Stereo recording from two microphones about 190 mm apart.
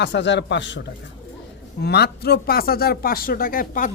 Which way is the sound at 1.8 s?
60° left (ahead or behind).